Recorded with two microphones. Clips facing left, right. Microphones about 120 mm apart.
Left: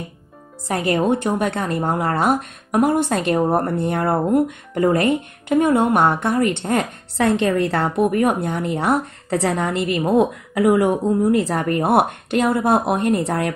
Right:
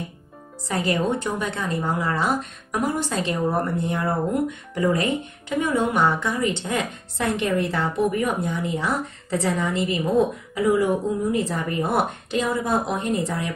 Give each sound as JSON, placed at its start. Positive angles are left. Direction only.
{"t": 0.9, "sound": "speech", "side_deg": 55}